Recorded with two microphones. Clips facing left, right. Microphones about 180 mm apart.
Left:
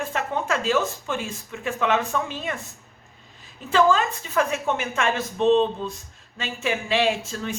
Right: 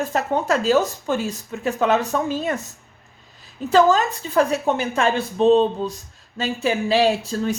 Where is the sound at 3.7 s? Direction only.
40° right (ahead or behind).